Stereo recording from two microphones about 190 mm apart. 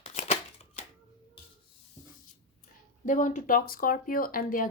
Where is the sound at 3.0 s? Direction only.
45° left (ahead or behind).